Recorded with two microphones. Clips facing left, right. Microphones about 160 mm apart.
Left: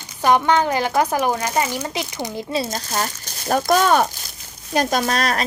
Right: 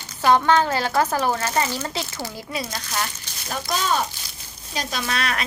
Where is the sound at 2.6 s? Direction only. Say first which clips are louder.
Left 4 dB; 40° left (ahead or behind).